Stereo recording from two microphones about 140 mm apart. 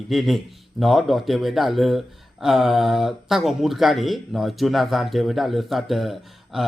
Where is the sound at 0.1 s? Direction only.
Centre (ahead or behind).